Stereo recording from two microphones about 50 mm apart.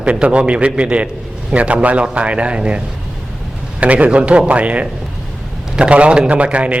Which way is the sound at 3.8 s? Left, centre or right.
Right.